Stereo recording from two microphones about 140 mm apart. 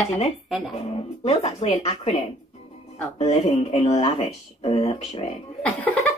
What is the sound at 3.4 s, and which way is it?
Speech, 40° left (ahead or behind).